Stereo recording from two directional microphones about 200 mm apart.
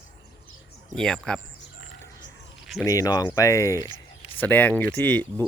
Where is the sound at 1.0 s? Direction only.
5° left (ahead or behind).